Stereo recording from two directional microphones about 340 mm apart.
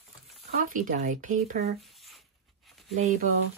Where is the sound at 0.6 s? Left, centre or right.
Right.